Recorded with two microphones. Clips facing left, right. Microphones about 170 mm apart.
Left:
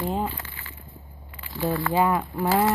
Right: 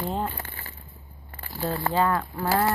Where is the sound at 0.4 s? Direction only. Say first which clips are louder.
Even; 40° right (ahead or behind).